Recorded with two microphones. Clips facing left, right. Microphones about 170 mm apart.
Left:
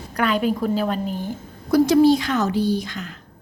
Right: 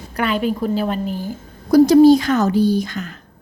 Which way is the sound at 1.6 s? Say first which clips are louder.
Right 5 dB; 40° right (ahead or behind).